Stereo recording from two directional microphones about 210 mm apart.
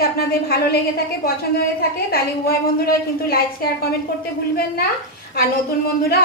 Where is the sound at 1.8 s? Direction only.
45° left (ahead or behind).